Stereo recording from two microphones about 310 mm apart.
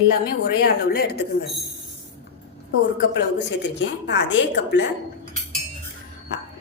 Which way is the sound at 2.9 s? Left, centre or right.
Left.